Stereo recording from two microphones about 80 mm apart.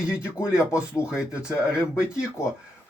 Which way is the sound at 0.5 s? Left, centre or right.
Left.